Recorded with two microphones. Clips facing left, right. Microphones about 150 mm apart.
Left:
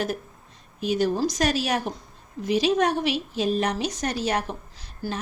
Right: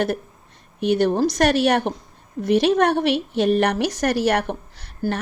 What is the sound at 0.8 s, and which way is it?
A woman's voice, 60° right (ahead or behind).